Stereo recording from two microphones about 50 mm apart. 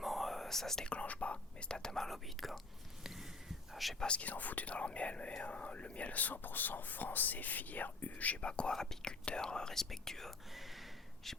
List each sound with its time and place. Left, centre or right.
0.0 s whispering: centre
0.9 s speech: left; by 2.6 s centre
3.0 s a sound: centre
4.0 s speech: left
4.3 s speech: left; by 10.3 s centre